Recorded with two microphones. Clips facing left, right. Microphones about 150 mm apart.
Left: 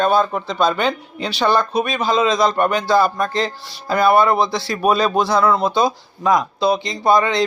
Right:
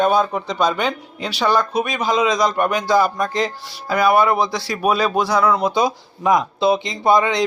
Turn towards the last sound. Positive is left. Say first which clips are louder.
# even
turn(degrees=-20)  # may be behind; listen again after turning